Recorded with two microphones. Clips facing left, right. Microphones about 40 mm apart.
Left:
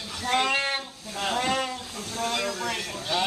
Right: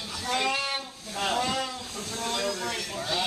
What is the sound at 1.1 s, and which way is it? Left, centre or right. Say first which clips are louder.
Speech: even; centre.